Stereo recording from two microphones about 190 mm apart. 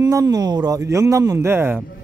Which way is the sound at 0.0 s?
15° right (ahead or behind).